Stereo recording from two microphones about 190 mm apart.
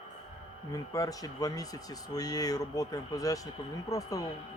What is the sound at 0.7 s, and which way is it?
Speech, 20° left (ahead or behind).